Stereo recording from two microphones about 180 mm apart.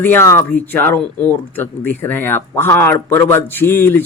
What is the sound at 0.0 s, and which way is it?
Speech, 10° left (ahead or behind).